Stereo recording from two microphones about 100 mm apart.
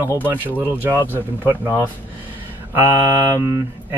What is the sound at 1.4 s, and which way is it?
Speech, 30° left (ahead or behind).